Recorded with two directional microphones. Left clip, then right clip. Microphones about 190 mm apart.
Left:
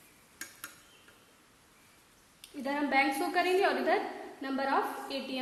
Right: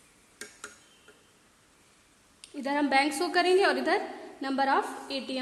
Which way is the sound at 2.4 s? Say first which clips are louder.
Right 5 dB; 40° right (ahead or behind).